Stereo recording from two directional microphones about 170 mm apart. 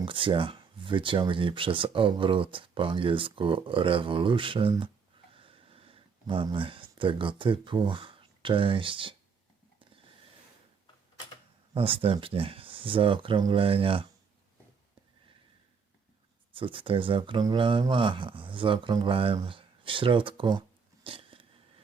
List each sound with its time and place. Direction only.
0.0 s speech: 30° right (ahead or behind)
5.3 s a sound: 30° right (ahead or behind)
11.7 s speech: 30° right (ahead or behind)
16.5 s speech: 30° right (ahead or behind)